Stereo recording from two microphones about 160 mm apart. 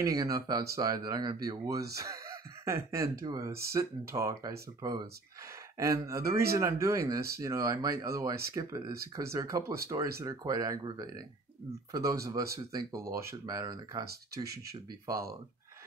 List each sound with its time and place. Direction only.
0.0 s speech: 20° right (ahead or behind)